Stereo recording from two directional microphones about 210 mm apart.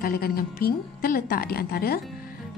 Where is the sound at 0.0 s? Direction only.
45° left (ahead or behind).